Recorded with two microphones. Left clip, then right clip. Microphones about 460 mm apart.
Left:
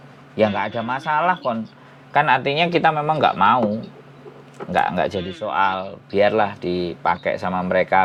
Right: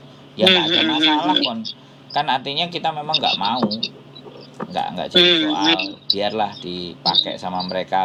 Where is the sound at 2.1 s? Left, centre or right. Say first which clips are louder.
Left 4 dB; left.